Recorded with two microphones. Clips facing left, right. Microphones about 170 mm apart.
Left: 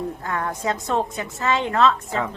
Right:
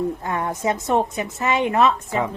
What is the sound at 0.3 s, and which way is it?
A woman's voice, 20° right (ahead or behind).